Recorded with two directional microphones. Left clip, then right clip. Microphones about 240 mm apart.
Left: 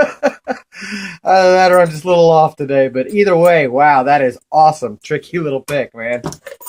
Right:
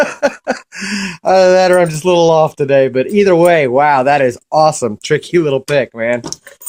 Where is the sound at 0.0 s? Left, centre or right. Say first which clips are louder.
Right 1 dB; right.